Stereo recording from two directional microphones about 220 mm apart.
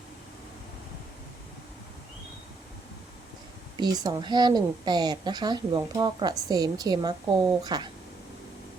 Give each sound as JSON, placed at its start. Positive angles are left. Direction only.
{"t": 3.8, "sound": "a woman's voice", "side_deg": -20}